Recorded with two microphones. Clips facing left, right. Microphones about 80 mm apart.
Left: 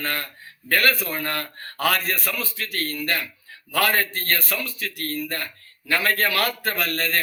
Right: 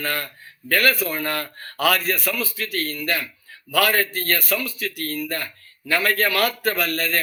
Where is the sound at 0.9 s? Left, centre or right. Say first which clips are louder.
Right 3 dB; centre.